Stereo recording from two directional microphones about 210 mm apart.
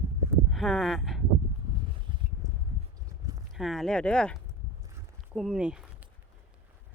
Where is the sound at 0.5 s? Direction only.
Centre (ahead or behind).